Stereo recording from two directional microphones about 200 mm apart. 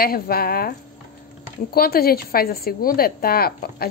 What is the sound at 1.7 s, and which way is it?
A woman's voice, 50° left (ahead or behind).